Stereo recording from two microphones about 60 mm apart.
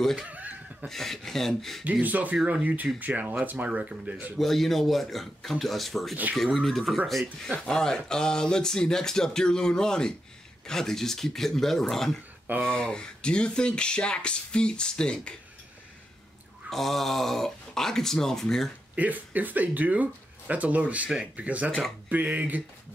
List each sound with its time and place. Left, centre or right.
0.0 s speech: centre
0.3 s a sound: right
0.8 s speech: centre
1.9 s speech: right
4.4 s speech: centre
16.7 s speech: centre
18.9 s speech: right